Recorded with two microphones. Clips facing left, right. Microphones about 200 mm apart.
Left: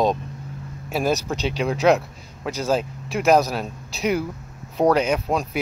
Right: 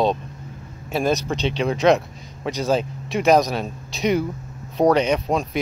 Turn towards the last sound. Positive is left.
turn(degrees=5)  # may be behind; listen again after turning